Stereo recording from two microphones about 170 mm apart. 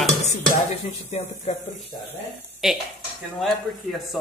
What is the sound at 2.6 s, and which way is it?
Speech, centre (ahead or behind).